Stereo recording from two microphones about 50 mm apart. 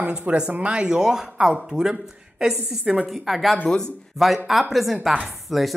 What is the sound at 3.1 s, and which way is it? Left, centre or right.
A woman's voice, centre.